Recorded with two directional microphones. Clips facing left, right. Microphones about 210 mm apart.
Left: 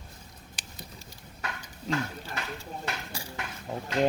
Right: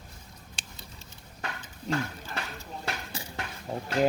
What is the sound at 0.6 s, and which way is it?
Patter, 25° right (ahead or behind).